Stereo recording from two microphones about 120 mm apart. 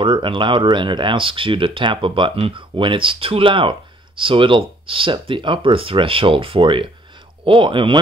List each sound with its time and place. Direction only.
0.0 s speech: 45° right (ahead or behind)